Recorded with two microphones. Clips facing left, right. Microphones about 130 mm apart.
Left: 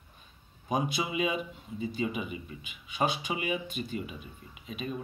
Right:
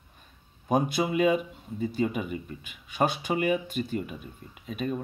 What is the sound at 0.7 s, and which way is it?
A man's voice, 50° right (ahead or behind).